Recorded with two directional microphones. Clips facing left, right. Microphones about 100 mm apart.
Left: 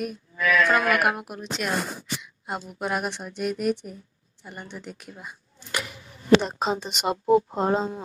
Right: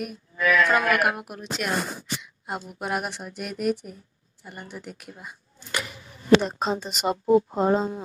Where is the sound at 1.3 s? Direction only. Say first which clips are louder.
Even; centre (ahead or behind).